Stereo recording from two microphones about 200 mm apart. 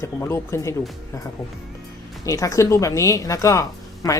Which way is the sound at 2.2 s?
15° left (ahead or behind).